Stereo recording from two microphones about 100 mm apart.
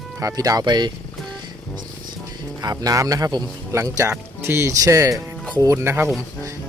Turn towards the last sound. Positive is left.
turn(degrees=-25)  # may be behind; listen again after turning